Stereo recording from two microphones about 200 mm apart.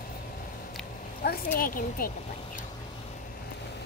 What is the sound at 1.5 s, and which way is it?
Speech, 45° left (ahead or behind).